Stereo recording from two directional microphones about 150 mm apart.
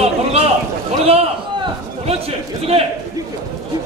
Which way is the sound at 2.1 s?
40° right (ahead or behind).